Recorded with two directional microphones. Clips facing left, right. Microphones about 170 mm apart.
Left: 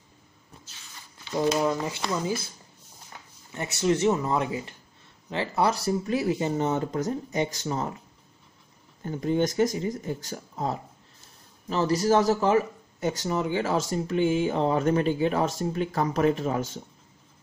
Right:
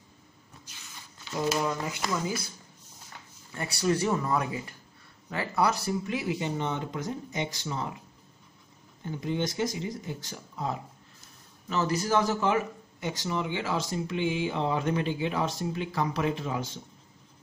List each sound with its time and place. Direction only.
1.6 s speech: 25° left (ahead or behind)
3.5 s speech: 20° left (ahead or behind); by 7.9 s 45° left (ahead or behind)
9.0 s speech: 45° left (ahead or behind)